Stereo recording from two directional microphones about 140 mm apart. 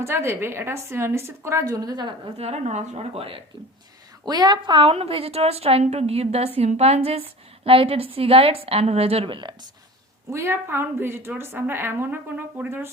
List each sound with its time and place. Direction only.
0.0 s a woman's voice: 20° right (ahead or behind)
2.4 s a woman's voice: 55° right (ahead or behind)
4.3 s a woman's voice: 30° right (ahead or behind)
10.2 s a woman's voice: 20° right (ahead or behind)